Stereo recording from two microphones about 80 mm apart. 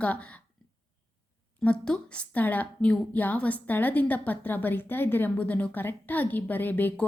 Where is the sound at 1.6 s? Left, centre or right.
Centre.